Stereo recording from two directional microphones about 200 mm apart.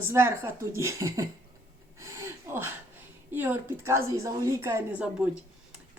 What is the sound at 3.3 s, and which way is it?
Speech, 10° right (ahead or behind).